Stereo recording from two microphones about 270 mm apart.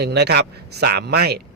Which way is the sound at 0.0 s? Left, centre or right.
Right.